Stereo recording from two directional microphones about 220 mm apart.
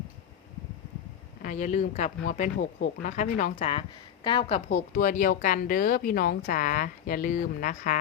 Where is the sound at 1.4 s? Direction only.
35° left (ahead or behind).